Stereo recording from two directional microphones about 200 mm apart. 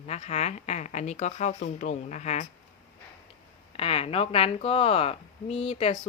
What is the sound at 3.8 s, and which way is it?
Speech, 30° left (ahead or behind).